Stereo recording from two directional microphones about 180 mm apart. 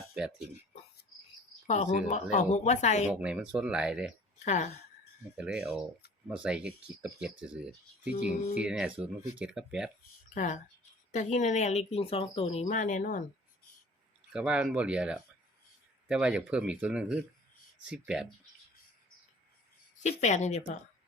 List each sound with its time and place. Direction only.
0.1 s speech: 5° right (ahead or behind)
1.6 s speech: 40° left (ahead or behind)
3.1 s speech: 5° right (ahead or behind)
4.4 s speech: 40° left (ahead or behind)
5.4 s speech: 5° right (ahead or behind)
10.3 s speech: 40° left (ahead or behind)
12.6 s speech: 45° left (ahead or behind)
14.3 s speech: 5° right (ahead or behind)
20.0 s speech: 40° left (ahead or behind)